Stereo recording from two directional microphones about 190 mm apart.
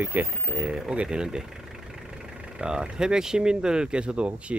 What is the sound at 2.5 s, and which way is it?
Speech, 5° right (ahead or behind).